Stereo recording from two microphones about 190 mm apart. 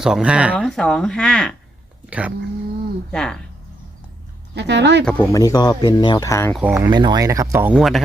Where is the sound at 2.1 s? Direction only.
5° right (ahead or behind).